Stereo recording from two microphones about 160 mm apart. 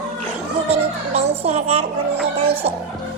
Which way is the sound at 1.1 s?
40° right (ahead or behind).